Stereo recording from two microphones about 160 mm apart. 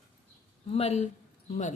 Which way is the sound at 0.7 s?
40° left (ahead or behind).